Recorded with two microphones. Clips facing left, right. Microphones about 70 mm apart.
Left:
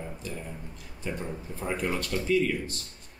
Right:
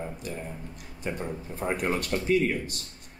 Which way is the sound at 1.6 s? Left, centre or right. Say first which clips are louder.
Right 3 dB; right.